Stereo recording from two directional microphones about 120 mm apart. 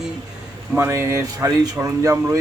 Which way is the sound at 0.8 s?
25° right (ahead or behind).